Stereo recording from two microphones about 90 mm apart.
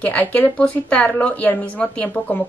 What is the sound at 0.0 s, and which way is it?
Speech, 15° left (ahead or behind).